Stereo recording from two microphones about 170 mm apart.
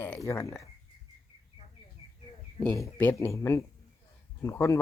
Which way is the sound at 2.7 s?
15° left (ahead or behind).